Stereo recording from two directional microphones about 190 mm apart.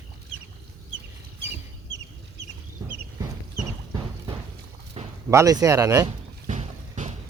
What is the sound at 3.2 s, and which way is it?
Clip-clop, 20° right (ahead or behind).